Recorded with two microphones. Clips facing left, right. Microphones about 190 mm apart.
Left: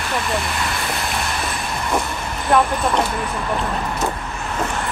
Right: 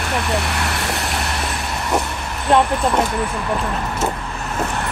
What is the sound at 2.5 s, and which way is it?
Speech, 25° right (ahead or behind).